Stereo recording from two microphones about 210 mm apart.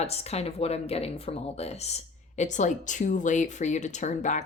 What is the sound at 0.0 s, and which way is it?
Speech, 30° left (ahead or behind).